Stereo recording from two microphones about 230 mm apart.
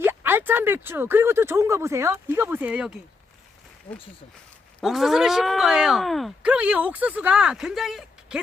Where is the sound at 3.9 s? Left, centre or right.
Left.